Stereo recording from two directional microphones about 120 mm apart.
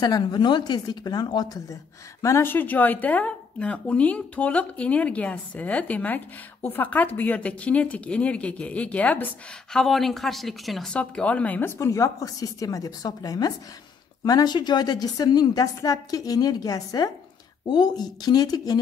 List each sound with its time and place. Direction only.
0.0 s a woman's voice: 35° left (ahead or behind)
2.2 s speech: 20° left (ahead or behind)
11.8 s a woman's voice: 25° left (ahead or behind)